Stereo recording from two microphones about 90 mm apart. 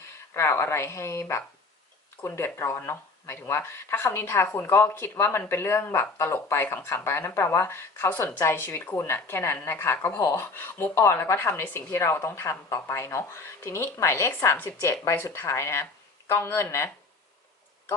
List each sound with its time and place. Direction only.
0.3 s speech: 30° left (ahead or behind)